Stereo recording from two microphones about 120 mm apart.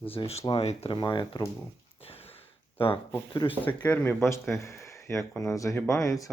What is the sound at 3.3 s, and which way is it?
Speech, 45° left (ahead or behind).